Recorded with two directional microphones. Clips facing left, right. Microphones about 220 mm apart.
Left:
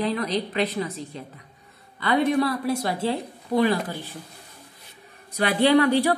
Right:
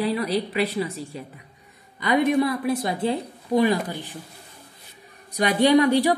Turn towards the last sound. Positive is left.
turn(degrees=-15)  # may be behind; listen again after turning